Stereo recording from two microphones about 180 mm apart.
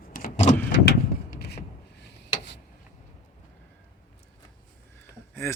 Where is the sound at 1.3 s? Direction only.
65° left (ahead or behind).